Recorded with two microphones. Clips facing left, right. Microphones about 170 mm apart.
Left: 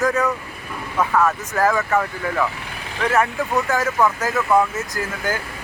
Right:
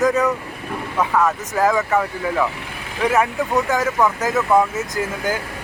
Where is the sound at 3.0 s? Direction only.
15° right (ahead or behind).